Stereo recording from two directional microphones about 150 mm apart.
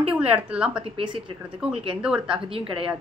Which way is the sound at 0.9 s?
35° right (ahead or behind).